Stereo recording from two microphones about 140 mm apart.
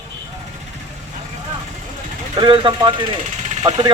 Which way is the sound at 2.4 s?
35° right (ahead or behind).